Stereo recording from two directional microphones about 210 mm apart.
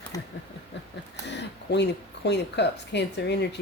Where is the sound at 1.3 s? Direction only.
55° left (ahead or behind).